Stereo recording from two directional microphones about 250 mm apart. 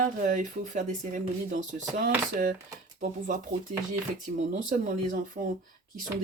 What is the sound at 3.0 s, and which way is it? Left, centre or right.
Speech, right.